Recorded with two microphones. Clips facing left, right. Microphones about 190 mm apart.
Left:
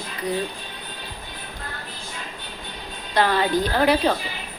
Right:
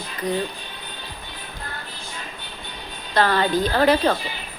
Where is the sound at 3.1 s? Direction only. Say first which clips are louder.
Right 1 dB; 15° left (ahead or behind).